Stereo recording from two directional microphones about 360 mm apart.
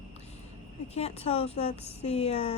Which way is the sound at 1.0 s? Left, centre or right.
Centre.